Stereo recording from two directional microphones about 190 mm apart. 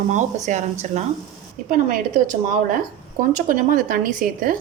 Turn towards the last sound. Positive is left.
turn(degrees=-45)  # may be behind; listen again after turning